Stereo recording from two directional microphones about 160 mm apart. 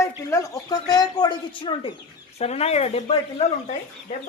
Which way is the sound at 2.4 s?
40° left (ahead or behind).